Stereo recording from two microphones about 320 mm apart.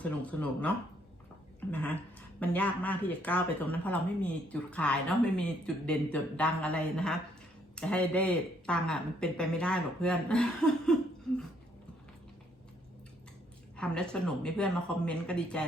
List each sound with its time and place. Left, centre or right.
0.0 s speech: centre
1.7 s speech: centre
13.7 s speech: centre